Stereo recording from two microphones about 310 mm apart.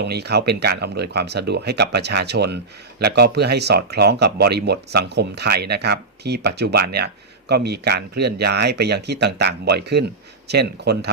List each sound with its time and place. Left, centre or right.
0.0 s speech: right